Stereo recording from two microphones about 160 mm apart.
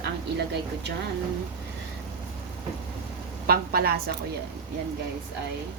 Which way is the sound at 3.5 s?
75° right (ahead or behind).